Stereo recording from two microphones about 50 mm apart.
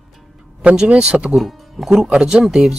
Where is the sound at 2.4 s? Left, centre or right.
Centre.